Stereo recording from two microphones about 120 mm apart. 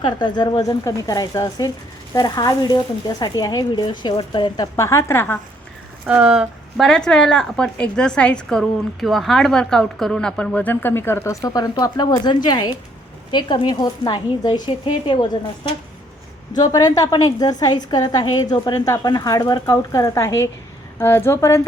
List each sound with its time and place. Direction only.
0.0 s speech: 35° left (ahead or behind); by 5.4 s 20° left (ahead or behind)
6.1 s speech: 5° right (ahead or behind)
6.8 s a woman's voice: 5° left (ahead or behind); by 21.6 s 20° left (ahead or behind)